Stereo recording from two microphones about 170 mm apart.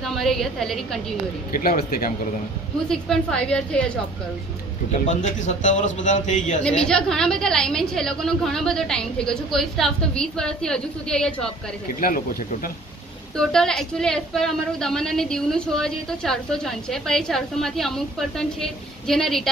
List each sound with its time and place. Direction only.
0.0 s speech: centre (ahead or behind)
1.5 s speech: 60° left (ahead or behind)
2.9 s speech: 5° left (ahead or behind)
4.9 s a man's voice: 45° left (ahead or behind)
6.9 s speech: 5° left (ahead or behind)
13.5 s speech: 5° left (ahead or behind)